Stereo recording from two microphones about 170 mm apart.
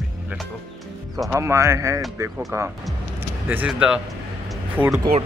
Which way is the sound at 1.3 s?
15° right (ahead or behind).